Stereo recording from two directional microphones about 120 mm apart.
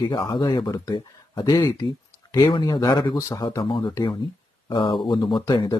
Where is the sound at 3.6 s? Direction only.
45° left (ahead or behind).